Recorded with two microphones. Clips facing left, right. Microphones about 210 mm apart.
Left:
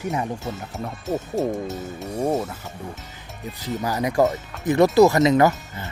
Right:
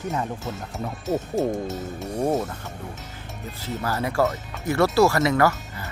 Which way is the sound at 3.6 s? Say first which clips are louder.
Left 3 dB; 15° left (ahead or behind).